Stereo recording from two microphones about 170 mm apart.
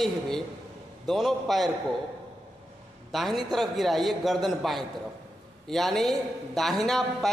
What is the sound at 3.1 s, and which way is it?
A man's voice, centre (ahead or behind).